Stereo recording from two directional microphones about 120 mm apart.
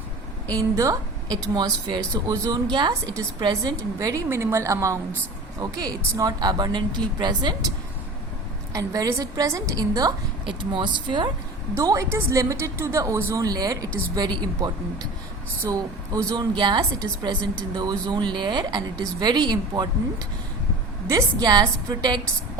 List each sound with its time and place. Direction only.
0.5 s a woman's voice: 30° right (ahead or behind)
8.7 s a woman's voice: 30° right (ahead or behind)
11.8 s a woman's voice: 25° right (ahead or behind)
21.1 s a woman's voice: 30° right (ahead or behind)